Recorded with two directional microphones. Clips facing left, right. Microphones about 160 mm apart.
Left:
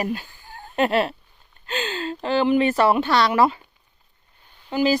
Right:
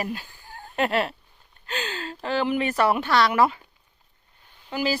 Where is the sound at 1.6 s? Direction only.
25° left (ahead or behind).